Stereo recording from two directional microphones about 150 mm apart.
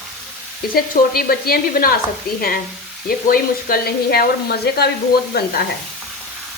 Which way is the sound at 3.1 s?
80° left.